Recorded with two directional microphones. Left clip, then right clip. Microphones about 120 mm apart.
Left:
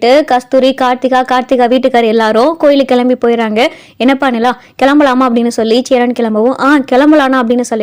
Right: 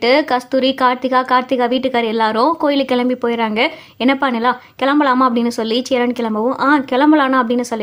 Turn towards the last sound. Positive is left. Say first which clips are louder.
# left 5 dB
turn(degrees=40)  # may be behind; listen again after turning